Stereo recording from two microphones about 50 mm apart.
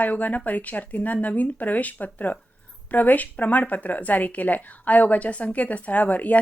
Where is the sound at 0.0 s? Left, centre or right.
Left.